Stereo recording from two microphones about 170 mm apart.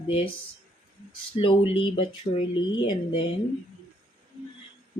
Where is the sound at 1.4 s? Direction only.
30° left (ahead or behind).